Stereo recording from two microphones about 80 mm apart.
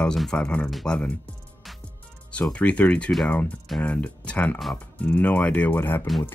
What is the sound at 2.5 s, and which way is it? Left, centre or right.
Speech, centre.